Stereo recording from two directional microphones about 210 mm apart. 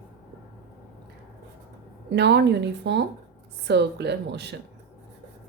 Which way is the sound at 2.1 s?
55° right (ahead or behind).